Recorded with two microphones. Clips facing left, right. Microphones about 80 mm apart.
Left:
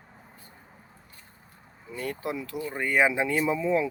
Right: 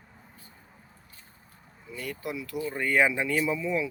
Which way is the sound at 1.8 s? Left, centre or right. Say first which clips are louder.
Left 3 dB; left.